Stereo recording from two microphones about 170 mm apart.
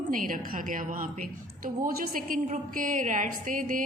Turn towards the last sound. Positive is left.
turn(degrees=-55)  # may be behind; listen again after turning